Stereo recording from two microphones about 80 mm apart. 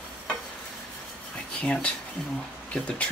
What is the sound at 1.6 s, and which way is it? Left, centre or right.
Speech, centre.